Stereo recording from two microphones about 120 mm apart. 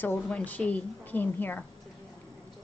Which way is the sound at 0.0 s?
15° left (ahead or behind).